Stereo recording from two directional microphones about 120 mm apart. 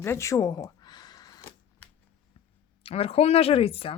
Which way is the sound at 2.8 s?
55° left (ahead or behind).